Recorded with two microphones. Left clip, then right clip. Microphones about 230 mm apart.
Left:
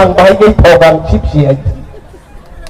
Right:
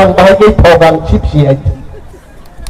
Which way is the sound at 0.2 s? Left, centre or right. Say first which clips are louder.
Even; right.